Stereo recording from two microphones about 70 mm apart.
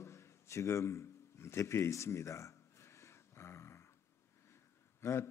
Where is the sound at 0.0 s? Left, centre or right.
Left.